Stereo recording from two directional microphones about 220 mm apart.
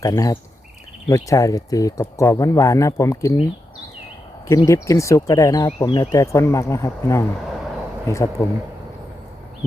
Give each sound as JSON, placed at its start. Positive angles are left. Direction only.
{"t": 0.0, "sound": "speech", "side_deg": 15}
{"t": 4.4, "sound": "speech", "side_deg": 15}